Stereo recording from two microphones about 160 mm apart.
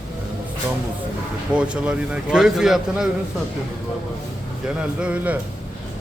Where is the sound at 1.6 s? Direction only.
5° right (ahead or behind).